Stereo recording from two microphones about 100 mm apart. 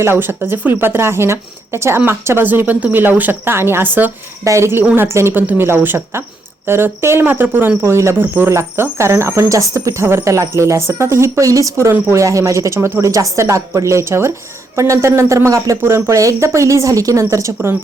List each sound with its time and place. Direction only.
0.0 s speech: 25° right (ahead or behind)
4.4 s speech: 30° right (ahead or behind)